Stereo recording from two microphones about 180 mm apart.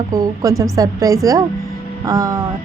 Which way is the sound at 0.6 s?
20° right (ahead or behind).